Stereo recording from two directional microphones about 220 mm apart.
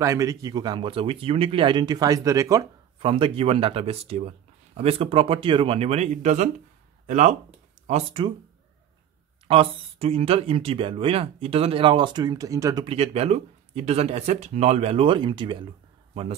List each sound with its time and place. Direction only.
0.0 s speech: 15° right (ahead or behind)
9.5 s speech: 25° right (ahead or behind)